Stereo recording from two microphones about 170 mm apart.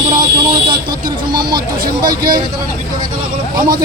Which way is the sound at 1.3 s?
25° right (ahead or behind).